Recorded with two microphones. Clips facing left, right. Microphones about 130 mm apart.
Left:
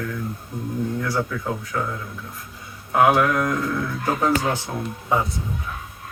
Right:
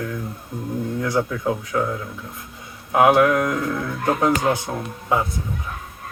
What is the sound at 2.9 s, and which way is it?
Speech, 15° right (ahead or behind).